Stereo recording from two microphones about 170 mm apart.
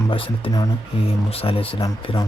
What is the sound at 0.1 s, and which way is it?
Speech, 25° left (ahead or behind).